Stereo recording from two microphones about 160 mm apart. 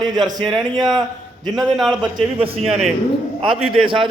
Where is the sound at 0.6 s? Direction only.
30° right (ahead or behind).